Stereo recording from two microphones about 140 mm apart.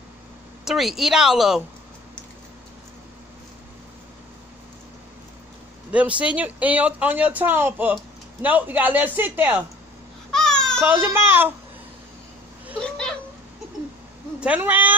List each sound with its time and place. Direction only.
0.7 s speech: centre (ahead or behind)
5.9 s speech: 10° right (ahead or behind)
10.3 s baby cry: 5° left (ahead or behind)
10.8 s speech: 15° right (ahead or behind)
12.8 s a sound: 5° left (ahead or behind)
14.4 s speech: 10° right (ahead or behind)